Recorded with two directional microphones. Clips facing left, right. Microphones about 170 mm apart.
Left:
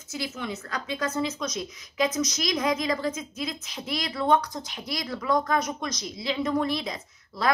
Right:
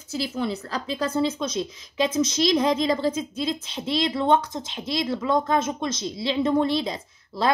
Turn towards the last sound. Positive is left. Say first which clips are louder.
# right 2 dB
turn(degrees=-30)  # may be behind; listen again after turning